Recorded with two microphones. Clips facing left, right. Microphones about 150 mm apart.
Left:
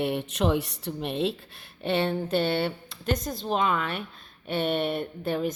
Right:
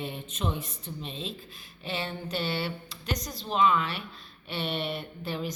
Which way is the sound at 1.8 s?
60° left (ahead or behind).